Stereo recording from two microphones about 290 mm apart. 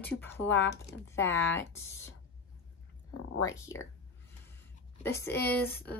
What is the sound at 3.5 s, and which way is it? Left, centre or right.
Speech, centre.